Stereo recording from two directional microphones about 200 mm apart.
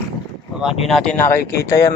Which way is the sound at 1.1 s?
10° left (ahead or behind).